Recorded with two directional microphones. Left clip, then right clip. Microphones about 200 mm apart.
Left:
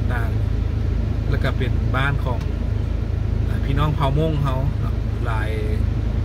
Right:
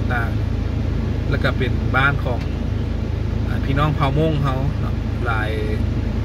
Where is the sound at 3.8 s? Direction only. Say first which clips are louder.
Right 3 dB; 15° left (ahead or behind).